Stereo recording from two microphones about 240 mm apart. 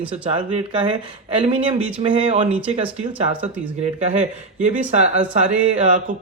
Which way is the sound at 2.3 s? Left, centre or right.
Right.